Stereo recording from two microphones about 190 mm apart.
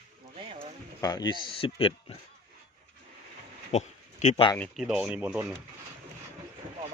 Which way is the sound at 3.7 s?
40° left (ahead or behind).